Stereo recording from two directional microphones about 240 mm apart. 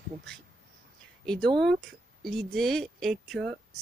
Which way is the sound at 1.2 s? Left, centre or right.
Centre.